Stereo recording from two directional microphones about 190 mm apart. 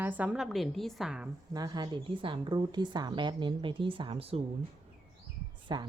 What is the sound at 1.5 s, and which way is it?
A woman's voice, 20° right (ahead or behind).